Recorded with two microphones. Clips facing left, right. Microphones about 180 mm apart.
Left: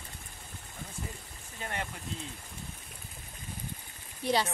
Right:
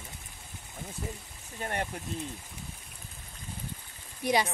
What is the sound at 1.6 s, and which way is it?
Speech, 50° right (ahead or behind).